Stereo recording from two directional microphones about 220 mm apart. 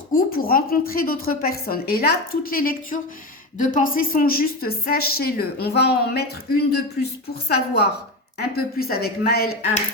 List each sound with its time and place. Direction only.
0.1 s a woman's voice: 40° left (ahead or behind)